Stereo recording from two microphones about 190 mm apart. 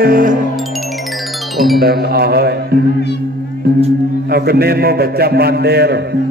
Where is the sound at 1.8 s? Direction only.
55° right (ahead or behind).